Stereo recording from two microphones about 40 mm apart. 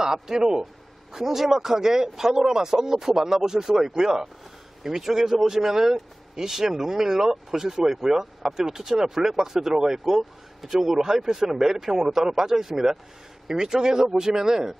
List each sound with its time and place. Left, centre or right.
0.0 s speech: centre